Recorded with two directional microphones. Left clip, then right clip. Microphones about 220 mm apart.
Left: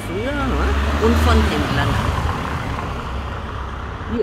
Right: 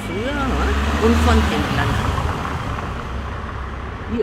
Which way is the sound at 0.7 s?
35° right (ahead or behind).